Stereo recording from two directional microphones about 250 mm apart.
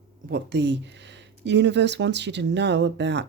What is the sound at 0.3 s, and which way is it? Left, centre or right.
Speech, right.